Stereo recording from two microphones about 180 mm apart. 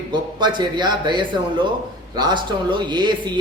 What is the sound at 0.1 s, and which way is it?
Speech, 25° right (ahead or behind).